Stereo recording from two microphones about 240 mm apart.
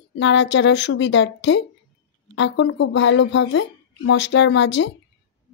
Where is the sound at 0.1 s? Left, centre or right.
Left.